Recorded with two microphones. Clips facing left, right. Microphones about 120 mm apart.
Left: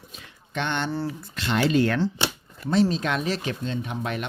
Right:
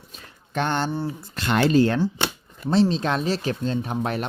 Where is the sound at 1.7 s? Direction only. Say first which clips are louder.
Right 3 dB; 30° right (ahead or behind).